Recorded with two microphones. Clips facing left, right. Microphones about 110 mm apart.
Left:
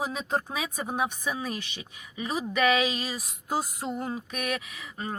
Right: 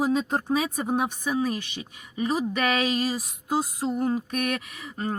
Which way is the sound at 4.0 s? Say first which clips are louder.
Right 7 dB; 50° right (ahead or behind).